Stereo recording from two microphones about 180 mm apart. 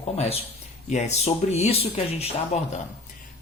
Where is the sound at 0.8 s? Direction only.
40° left (ahead or behind).